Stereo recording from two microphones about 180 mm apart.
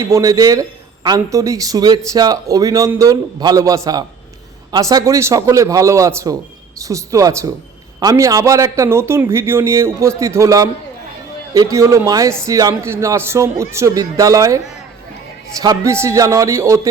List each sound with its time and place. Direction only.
0.0 s a man's voice: 20° right (ahead or behind)
15.6 s a man's voice: 20° right (ahead or behind)